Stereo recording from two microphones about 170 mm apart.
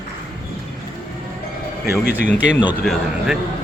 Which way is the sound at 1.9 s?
75° left (ahead or behind).